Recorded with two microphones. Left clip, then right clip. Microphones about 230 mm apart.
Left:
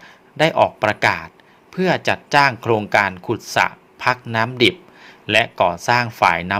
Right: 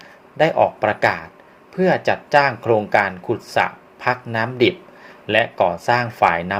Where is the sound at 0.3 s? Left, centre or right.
Left.